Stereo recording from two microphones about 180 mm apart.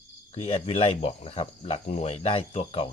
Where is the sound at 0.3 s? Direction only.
30° left (ahead or behind).